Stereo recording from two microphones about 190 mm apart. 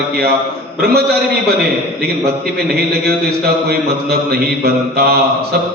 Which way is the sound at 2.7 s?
55° right (ahead or behind).